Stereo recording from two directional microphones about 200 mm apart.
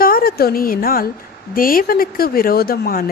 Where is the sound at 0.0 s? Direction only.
50° left (ahead or behind).